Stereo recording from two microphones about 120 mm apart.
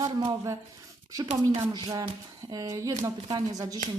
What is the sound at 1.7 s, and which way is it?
Speech, 35° right (ahead or behind).